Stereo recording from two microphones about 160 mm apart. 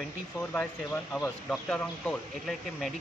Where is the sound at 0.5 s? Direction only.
10° left (ahead or behind).